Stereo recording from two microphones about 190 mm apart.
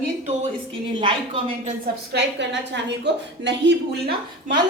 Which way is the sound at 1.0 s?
25° right (ahead or behind).